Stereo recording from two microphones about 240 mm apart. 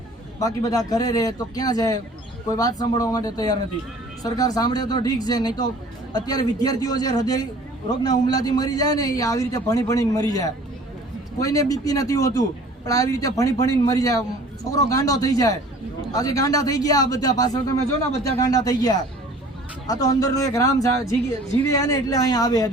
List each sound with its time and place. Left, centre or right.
0.3 s a man's voice: centre